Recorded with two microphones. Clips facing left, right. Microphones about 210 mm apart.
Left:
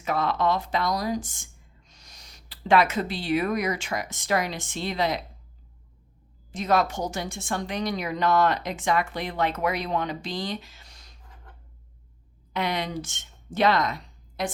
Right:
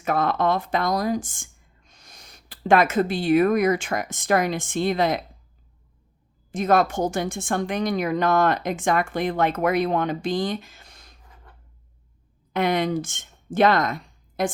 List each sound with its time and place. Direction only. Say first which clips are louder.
0.0 s speech: right 3 dB; 50° right (ahead or behind)
6.5 s a woman's voice: right 4 dB; 50° right (ahead or behind)
12.5 s speech: right 6 dB; 50° right (ahead or behind)